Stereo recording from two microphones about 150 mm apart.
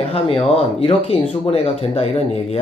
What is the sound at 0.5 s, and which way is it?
Speech, 40° left (ahead or behind).